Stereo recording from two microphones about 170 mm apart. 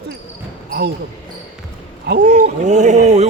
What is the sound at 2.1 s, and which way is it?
Speech, 80° right.